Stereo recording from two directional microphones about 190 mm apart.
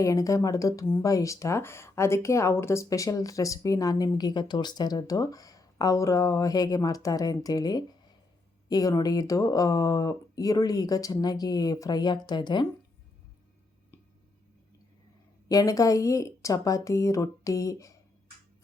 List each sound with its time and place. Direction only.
0.0 s speech: 15° left (ahead or behind)
15.4 s speech: 20° left (ahead or behind)